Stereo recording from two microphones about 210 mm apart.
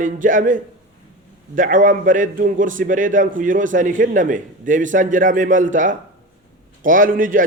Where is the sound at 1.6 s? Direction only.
40° right (ahead or behind).